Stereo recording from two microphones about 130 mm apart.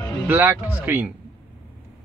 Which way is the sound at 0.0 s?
35° left (ahead or behind).